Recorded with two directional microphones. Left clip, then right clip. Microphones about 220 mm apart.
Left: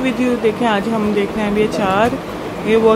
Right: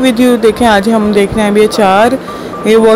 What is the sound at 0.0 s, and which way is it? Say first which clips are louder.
Speech: right 8 dB; 30° right (ahead or behind).